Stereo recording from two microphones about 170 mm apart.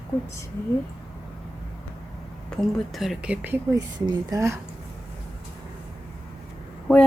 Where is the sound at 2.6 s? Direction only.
Centre (ahead or behind).